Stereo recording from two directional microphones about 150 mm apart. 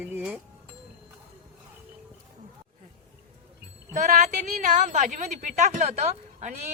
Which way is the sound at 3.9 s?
55° right (ahead or behind).